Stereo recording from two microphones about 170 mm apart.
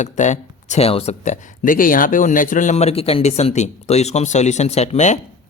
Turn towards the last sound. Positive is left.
turn(degrees=45)  # may be behind; listen again after turning